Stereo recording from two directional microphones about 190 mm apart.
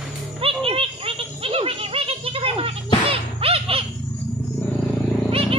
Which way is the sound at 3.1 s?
30° right (ahead or behind).